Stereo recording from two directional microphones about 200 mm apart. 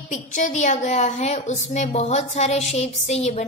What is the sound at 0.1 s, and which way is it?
A woman's voice, 40° left (ahead or behind).